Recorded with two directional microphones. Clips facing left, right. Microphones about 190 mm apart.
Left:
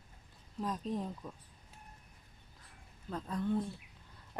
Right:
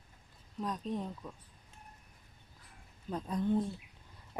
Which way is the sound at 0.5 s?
Centre (ahead or behind).